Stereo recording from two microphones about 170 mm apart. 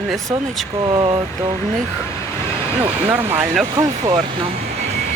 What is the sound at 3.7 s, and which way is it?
Speech, 25° right (ahead or behind).